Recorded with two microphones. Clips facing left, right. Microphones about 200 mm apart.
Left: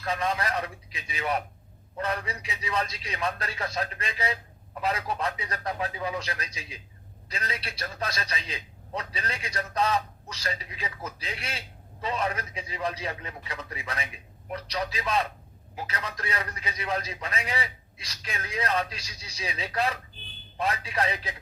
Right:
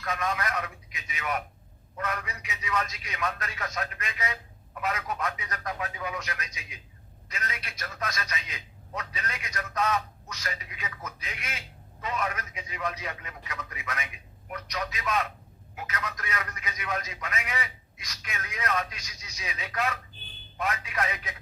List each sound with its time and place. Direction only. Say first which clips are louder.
0.0 s a man's voice: left 2 dB; 30° left (ahead or behind)